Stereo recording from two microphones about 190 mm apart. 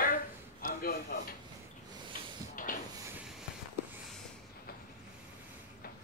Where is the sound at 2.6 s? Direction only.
45° left (ahead or behind).